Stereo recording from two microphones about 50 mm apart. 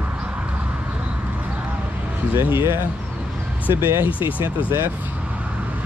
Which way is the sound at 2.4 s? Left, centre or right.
Right.